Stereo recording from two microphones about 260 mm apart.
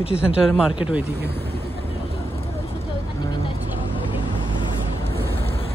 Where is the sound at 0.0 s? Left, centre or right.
Left.